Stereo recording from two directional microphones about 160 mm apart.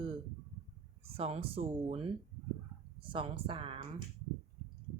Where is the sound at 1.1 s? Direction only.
40° right (ahead or behind).